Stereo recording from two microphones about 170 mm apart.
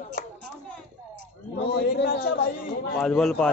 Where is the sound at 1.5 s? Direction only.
80° left.